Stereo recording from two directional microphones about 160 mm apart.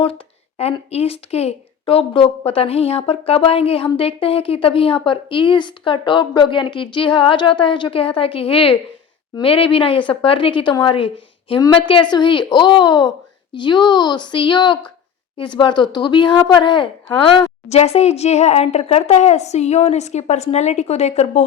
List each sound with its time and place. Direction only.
0.6 s a woman's voice: 40° left (ahead or behind)